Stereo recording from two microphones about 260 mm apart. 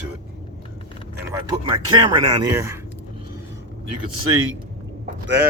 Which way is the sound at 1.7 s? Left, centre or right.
Centre.